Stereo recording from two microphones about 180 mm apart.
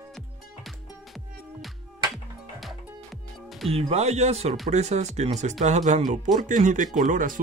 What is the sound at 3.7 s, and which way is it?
Speech, 35° right (ahead or behind).